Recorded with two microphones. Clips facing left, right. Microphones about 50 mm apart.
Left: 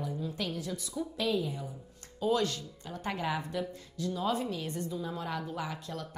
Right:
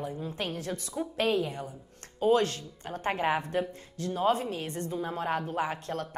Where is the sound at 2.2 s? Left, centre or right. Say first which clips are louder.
Right 5 dB; right.